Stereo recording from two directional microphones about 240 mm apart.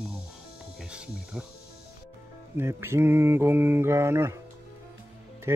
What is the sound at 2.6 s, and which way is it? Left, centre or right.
Mantra, centre.